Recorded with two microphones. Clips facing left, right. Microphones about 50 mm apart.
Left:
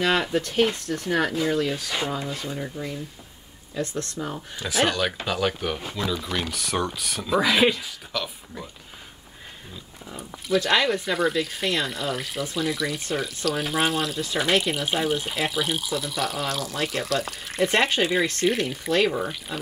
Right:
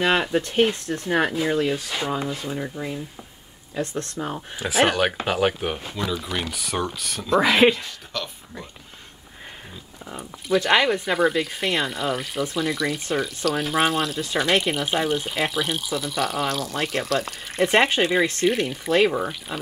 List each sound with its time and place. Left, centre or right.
0.0 s speech: centre
4.8 s speech: right
5.5 s speech: centre
5.8 s speech: centre
7.3 s speech: centre
7.8 s speech: centre
10.0 s speech: centre